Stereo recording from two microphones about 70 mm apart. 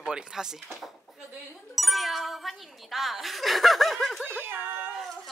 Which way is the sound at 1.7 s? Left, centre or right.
Centre.